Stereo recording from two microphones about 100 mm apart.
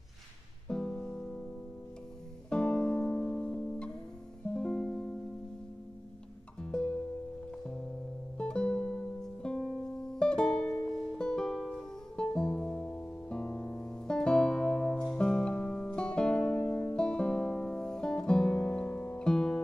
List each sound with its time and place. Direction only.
0.7 s music: 5° left (ahead or behind)
2.5 s music: 10° left (ahead or behind)
6.6 s music: 5° left (ahead or behind)
8.4 s music: 10° left (ahead or behind)
16.5 s music: 25° left (ahead or behind)
16.9 s music: 10° left (ahead or behind)